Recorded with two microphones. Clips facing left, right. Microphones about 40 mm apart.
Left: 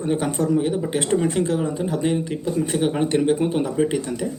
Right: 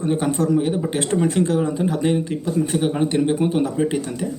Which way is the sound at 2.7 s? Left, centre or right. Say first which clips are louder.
Even; centre.